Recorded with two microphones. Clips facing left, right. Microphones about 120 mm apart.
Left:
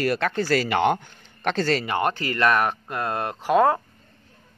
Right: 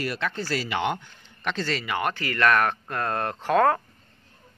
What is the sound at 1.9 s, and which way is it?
Speech, 30° left (ahead or behind).